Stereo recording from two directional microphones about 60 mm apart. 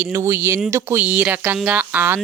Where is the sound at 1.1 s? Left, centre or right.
Right.